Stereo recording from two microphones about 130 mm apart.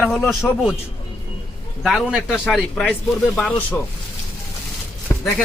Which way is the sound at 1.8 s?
Centre (ahead or behind).